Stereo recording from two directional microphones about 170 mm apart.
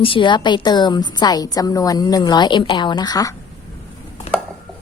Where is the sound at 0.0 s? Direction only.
30° left (ahead or behind).